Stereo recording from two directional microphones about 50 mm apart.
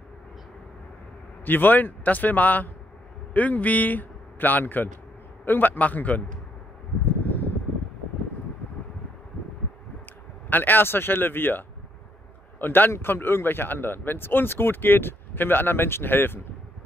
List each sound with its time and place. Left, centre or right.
1.4 s a man's voice: left
7.1 s a sound: left
10.5 s a man's voice: left